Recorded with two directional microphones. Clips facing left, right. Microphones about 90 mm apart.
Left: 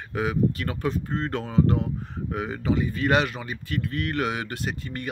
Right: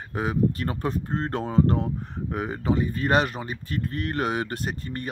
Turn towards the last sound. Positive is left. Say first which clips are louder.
# even
turn(degrees=-40)  # may be behind; listen again after turning